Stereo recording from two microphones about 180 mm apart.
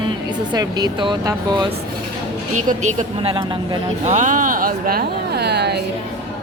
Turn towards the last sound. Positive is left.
turn(degrees=-65)  # may be behind; listen again after turning